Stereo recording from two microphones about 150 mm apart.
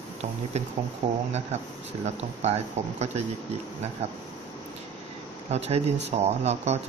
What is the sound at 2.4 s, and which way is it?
Speech, 45° right (ahead or behind).